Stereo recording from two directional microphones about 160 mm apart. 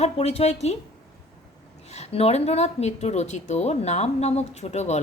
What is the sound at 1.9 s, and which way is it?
A woman's voice, 40° left (ahead or behind).